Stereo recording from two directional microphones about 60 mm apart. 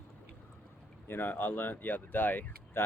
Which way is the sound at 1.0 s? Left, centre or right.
Left.